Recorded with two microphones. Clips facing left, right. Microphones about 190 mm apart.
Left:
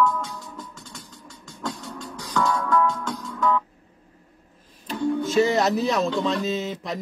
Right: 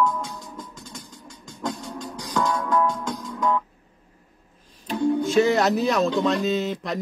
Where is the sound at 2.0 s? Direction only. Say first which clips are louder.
Left 1 dB; 20° right (ahead or behind).